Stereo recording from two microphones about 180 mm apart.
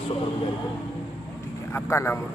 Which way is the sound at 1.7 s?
15° left (ahead or behind).